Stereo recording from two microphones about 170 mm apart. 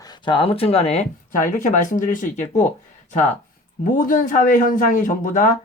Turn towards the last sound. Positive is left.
turn(degrees=50)  # may be behind; listen again after turning